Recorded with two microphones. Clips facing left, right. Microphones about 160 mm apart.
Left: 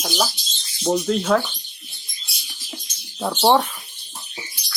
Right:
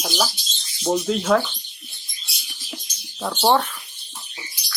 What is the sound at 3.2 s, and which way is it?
Speech, 10° left (ahead or behind).